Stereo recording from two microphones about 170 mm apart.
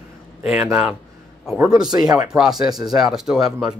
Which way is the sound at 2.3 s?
Centre (ahead or behind).